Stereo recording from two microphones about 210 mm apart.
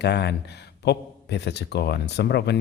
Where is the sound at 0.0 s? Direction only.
55° left (ahead or behind).